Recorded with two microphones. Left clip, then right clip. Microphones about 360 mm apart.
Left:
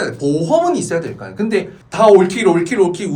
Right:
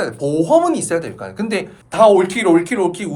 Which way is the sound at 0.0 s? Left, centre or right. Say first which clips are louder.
Even; right.